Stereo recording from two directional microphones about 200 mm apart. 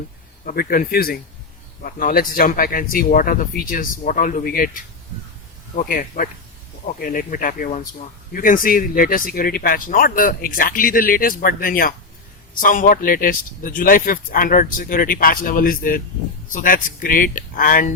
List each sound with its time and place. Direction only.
0.4 s speech: 50° left (ahead or behind)